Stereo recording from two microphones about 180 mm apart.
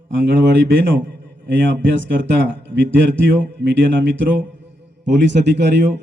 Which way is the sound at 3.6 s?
80° right.